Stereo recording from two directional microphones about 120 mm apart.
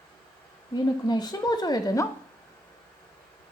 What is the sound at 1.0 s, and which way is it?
Speech, 35° left (ahead or behind).